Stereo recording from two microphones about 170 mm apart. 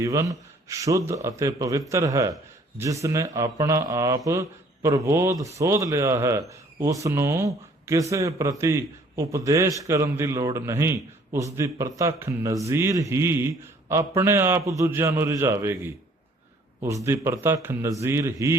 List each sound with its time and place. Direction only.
0.0 s speech: 20° right (ahead or behind)
17.1 s speech: 15° right (ahead or behind)